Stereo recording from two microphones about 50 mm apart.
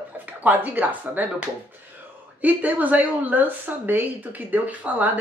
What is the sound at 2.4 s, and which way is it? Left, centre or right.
Speech, right.